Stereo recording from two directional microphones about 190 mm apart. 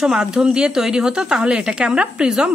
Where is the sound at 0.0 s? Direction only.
5° right (ahead or behind).